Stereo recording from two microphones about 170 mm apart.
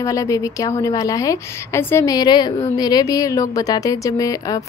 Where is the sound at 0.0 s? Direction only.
20° left (ahead or behind).